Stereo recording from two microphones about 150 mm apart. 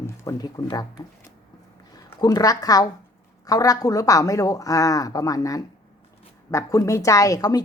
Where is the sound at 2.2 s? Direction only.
25° left (ahead or behind).